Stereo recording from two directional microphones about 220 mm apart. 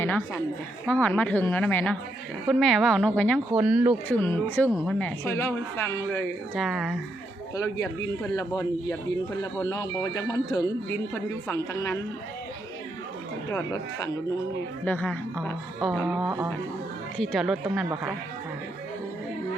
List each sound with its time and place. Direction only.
0.0 s a woman's voice: 10° left (ahead or behind)
3.5 s speech: 5° right (ahead or behind)
4.1 s speech: 10° left (ahead or behind)
7.5 s speech: 15° left (ahead or behind)
13.5 s speech: 15° left (ahead or behind); by 17.8 s centre (ahead or behind)